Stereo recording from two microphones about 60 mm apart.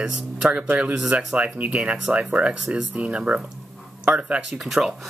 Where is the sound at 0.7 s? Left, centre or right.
Centre.